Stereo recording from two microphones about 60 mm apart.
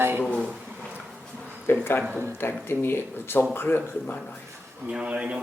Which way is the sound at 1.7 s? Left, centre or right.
Left.